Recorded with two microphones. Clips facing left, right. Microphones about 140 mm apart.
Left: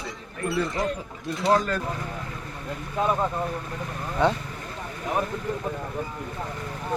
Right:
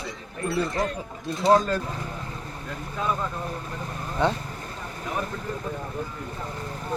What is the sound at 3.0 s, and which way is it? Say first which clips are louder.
Speech: left 4 dB; 40° left (ahead or behind).